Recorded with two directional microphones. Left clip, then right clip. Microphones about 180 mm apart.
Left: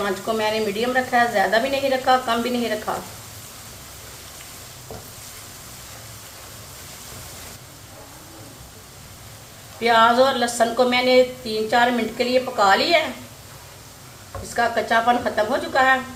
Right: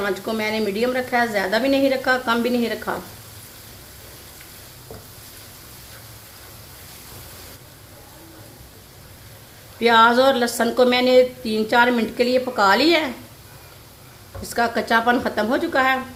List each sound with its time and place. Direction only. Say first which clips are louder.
0.3 s a woman's voice: left 1 dB; 55° right (ahead or behind)
9.8 s a woman's voice: right 1 dB; 55° right (ahead or behind)
14.5 s a woman's voice: even; 60° right (ahead or behind)